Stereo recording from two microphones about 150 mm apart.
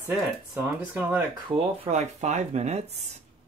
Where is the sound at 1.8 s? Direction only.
50° right (ahead or behind).